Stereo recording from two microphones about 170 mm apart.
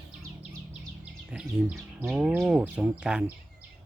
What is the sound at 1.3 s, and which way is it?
Speech, 5° right (ahead or behind).